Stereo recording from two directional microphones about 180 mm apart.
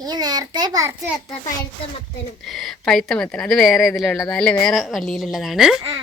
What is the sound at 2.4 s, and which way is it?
A woman's voice, centre (ahead or behind).